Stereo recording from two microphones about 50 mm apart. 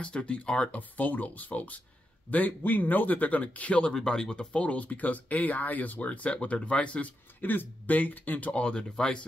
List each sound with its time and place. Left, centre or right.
0.0 s speech: left
3.9 s speech: centre
7.4 s speech: left; by 9.2 s centre